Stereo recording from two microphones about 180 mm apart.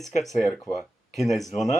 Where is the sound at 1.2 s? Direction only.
Centre (ahead or behind).